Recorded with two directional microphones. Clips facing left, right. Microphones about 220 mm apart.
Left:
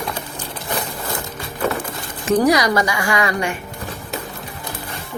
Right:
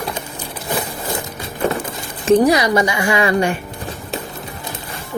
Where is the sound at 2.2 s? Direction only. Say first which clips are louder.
Right 3 dB; 25° right (ahead or behind).